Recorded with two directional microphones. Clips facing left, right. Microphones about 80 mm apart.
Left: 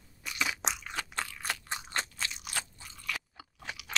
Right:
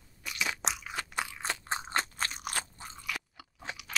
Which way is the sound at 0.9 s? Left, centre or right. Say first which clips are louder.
Right 1 dB; centre.